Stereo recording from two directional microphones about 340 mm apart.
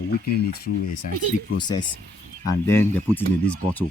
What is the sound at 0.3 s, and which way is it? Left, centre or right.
Speech, left.